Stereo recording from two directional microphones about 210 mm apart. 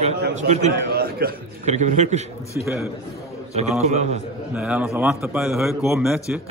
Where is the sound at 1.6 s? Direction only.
35° right (ahead or behind).